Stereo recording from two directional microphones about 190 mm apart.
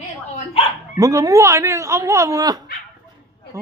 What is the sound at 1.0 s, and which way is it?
Speech, 15° right (ahead or behind).